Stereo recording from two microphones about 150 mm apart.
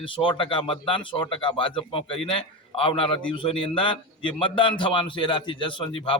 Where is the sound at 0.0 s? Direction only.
35° left (ahead or behind).